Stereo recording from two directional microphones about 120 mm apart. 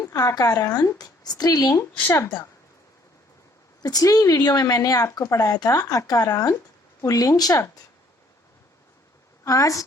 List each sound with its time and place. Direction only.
0.0 s speech: 30° left (ahead or behind)
3.8 s speech: 30° left (ahead or behind)
9.4 s a woman's voice: 25° left (ahead or behind)